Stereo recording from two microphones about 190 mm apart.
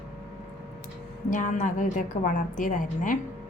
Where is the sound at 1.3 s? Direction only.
40° left (ahead or behind).